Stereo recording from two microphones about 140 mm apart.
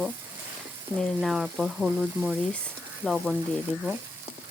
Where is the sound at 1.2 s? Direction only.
Centre (ahead or behind).